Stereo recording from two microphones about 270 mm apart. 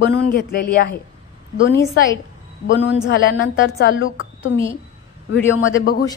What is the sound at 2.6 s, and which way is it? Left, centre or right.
A woman's voice, left.